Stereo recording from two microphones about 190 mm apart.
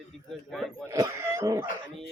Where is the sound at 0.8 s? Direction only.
15° right (ahead or behind).